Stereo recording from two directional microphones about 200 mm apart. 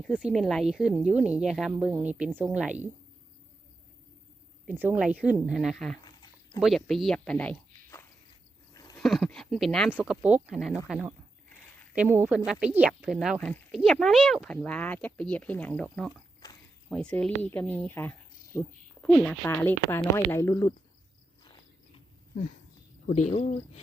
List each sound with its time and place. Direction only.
0.0 s a woman's voice: 5° right (ahead or behind)
4.6 s speech: 10° right (ahead or behind); by 8.0 s 10° left (ahead or behind)
9.0 s a sound: centre (ahead or behind)
9.9 s a woman's voice: 5° right (ahead or behind); by 20.7 s 20° left (ahead or behind)
23.0 s speech: 35° left (ahead or behind)